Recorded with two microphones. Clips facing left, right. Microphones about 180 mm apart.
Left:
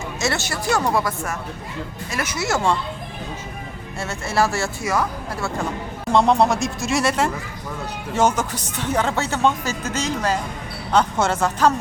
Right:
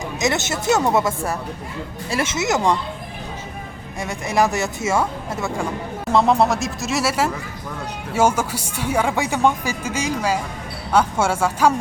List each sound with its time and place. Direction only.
0.2 s speech: 20° right (ahead or behind)
4.0 s speech: 15° right (ahead or behind)
6.1 s speech: centre (ahead or behind)